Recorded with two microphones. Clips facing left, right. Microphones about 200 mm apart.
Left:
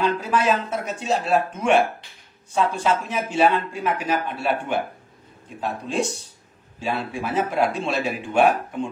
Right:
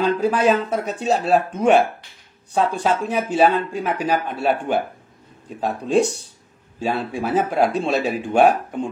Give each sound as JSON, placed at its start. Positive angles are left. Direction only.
{"t": 0.0, "sound": "speech", "side_deg": -35}